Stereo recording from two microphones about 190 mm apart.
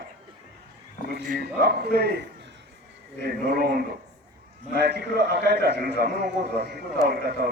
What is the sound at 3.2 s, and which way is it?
A man's voice, 55° right (ahead or behind).